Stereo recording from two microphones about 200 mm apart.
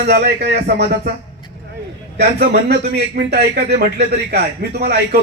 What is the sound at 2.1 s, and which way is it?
Speech, 55° right (ahead or behind).